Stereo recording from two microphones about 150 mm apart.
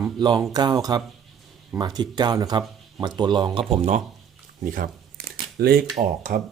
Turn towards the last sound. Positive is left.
turn(degrees=-70)  # may be behind; listen again after turning